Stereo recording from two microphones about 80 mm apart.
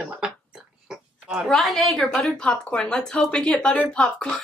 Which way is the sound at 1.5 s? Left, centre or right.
Centre.